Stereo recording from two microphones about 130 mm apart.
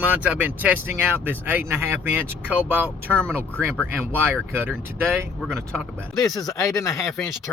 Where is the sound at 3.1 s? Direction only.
5° left (ahead or behind).